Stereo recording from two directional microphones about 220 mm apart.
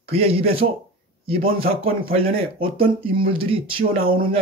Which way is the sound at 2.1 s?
25° right (ahead or behind).